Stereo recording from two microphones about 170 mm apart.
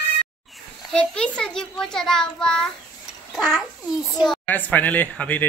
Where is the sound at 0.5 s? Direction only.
Centre (ahead or behind).